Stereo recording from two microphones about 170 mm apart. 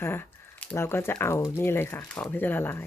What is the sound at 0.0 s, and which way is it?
Speech, 15° left (ahead or behind).